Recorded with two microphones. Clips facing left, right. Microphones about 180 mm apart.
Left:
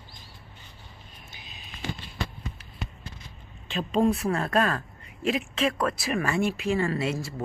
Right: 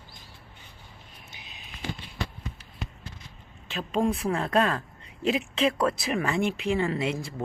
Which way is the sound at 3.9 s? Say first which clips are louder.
Left 2 dB; 10° right (ahead or behind).